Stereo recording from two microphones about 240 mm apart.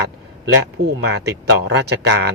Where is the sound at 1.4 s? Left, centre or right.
Right.